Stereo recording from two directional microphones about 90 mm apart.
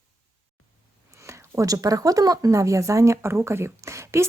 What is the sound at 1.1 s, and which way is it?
Speech, 30° right (ahead or behind).